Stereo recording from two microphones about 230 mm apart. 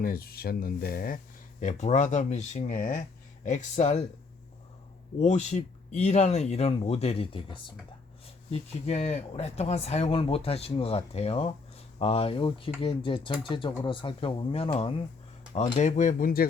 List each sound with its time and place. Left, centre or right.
0.0 s speech: left
5.2 s speech: left
8.9 s speech: left